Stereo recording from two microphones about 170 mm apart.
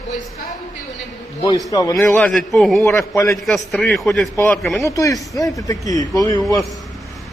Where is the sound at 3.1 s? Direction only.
20° left (ahead or behind).